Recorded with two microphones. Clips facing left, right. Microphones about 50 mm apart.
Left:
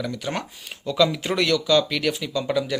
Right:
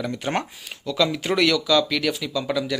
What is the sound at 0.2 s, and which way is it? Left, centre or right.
Speech, right.